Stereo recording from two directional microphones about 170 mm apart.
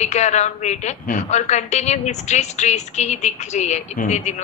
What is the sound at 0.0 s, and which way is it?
A woman's voice, 40° left (ahead or behind).